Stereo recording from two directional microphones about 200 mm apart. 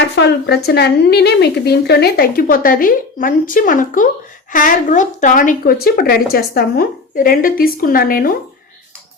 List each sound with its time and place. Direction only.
0.2 s a woman's voice: 55° left (ahead or behind)